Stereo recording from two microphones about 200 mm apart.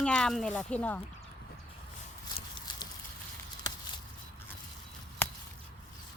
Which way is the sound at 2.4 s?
20° left (ahead or behind).